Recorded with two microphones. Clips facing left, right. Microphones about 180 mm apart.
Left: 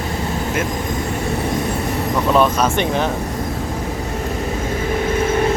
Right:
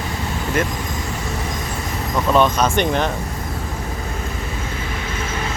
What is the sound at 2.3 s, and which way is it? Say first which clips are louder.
Speech: even; 5° left (ahead or behind).